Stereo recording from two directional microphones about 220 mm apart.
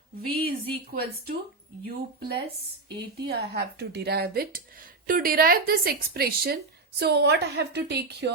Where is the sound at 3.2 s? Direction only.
45° right (ahead or behind).